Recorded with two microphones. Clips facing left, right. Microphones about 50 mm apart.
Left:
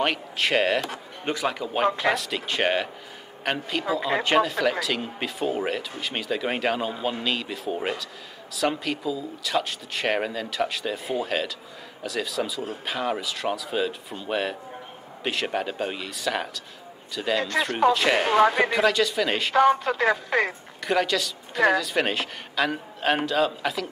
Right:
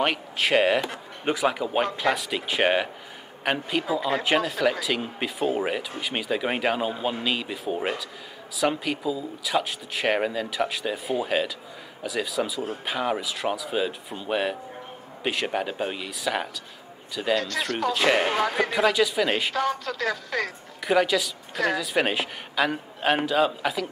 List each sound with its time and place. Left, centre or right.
0.0 s speech: centre
17.6 s speech: left
17.9 s speech: centre
19.5 s speech: left
20.8 s speech: centre